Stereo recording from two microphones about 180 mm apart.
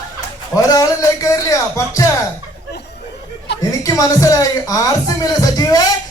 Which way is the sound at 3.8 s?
20° left (ahead or behind).